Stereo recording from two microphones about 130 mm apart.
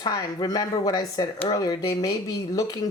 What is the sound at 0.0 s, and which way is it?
Speech, 30° left (ahead or behind).